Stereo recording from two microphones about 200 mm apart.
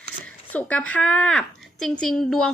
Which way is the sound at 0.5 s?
5° left (ahead or behind).